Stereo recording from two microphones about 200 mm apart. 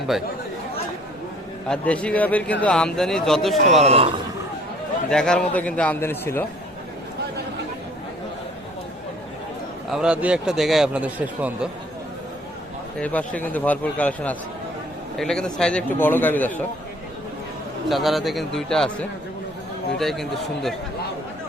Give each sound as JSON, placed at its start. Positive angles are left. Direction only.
{"t": 1.7, "sound": "a man's voice", "side_deg": 5}
{"t": 3.8, "sound": "a man's voice", "side_deg": -30}
{"t": 5.1, "sound": "speech", "side_deg": 5}
{"t": 9.9, "sound": "a man's voice", "side_deg": -5}
{"t": 13.0, "sound": "speech", "side_deg": 5}
{"t": 17.8, "sound": "a man's voice", "side_deg": 0}